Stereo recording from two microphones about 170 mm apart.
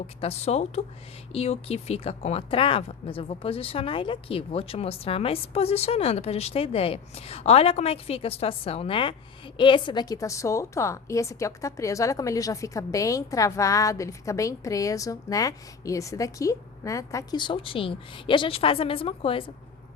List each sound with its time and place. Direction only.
0.2 s a woman's voice: 40° left (ahead or behind)